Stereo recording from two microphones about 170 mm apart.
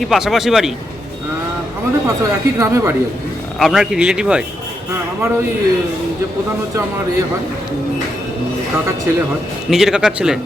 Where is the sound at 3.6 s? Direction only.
Centre (ahead or behind).